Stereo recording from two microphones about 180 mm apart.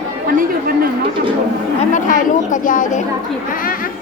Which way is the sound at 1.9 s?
45° left (ahead or behind).